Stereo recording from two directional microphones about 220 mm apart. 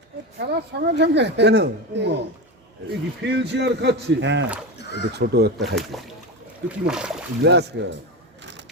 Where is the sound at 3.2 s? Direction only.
55° right (ahead or behind).